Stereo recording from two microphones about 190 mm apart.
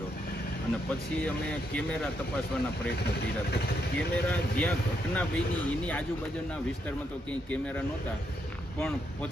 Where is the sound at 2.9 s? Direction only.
60° left (ahead or behind).